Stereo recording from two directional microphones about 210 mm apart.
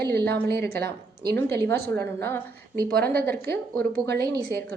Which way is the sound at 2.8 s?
45° right (ahead or behind).